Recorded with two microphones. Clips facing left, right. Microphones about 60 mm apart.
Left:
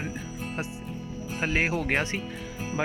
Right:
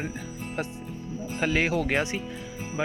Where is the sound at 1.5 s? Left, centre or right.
Left.